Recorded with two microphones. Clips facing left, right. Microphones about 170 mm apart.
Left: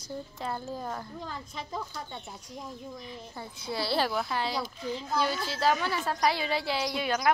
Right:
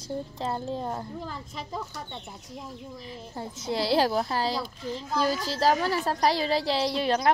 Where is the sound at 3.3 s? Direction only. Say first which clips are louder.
Right 5 dB; 40° right (ahead or behind).